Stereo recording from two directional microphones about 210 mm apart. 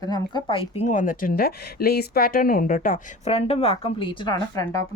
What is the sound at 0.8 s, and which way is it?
Speech, 35° left (ahead or behind).